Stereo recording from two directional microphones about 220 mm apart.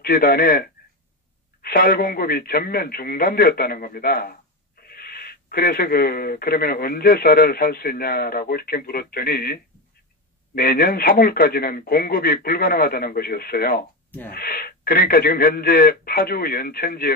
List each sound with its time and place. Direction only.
0.0 s speech: 40° left (ahead or behind)